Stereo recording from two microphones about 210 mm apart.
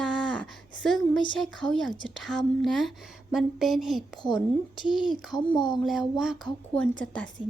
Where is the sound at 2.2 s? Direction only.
Centre (ahead or behind).